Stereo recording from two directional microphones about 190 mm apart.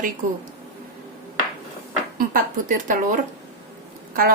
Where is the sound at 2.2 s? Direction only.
45° right (ahead or behind).